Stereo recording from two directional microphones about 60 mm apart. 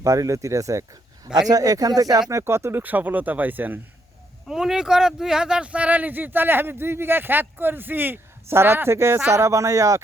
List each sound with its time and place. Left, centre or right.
0.0 s speech: right
1.5 s speech: right
2.4 s speech: right
2.8 s speech: right
4.4 s speech: centre; by 10.0 s right